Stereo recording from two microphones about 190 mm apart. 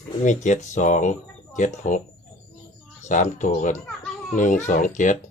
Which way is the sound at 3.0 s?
40° left (ahead or behind).